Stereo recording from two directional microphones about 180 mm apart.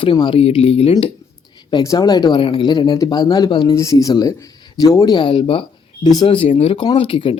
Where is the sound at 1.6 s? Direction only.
20° left (ahead or behind).